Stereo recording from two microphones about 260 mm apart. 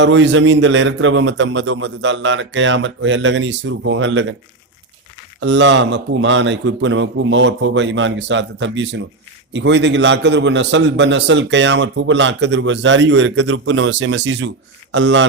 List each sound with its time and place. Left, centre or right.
0.0 s a man's voice: right
5.4 s a man's voice: right